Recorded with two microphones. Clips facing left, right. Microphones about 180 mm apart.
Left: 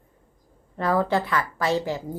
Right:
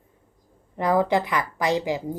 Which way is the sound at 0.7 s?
15° right (ahead or behind).